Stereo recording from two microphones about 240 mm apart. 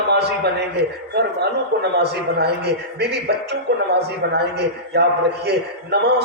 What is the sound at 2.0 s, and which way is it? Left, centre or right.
A man's voice, right.